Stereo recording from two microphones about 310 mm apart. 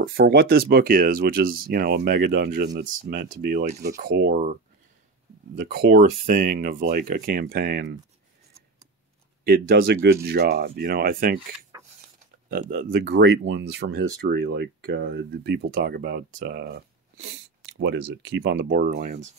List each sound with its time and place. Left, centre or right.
0.0 s speech: right
5.6 s speech: right
9.4 s speech: right
11.7 s cutlery: centre
12.4 s speech: right